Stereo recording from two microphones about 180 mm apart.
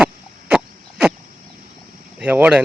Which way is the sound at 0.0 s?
5° right (ahead or behind).